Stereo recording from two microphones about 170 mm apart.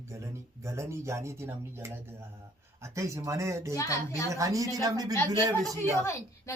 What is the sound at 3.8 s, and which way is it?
Speech, 20° left (ahead or behind).